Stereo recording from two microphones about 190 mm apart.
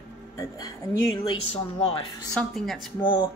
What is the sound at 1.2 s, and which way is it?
Speech, 25° left (ahead or behind).